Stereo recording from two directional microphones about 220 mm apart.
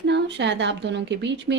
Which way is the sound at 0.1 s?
55° right (ahead or behind).